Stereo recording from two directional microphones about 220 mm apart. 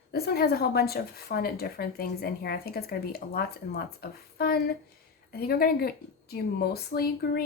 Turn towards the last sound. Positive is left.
turn(degrees=45)  # may be behind; listen again after turning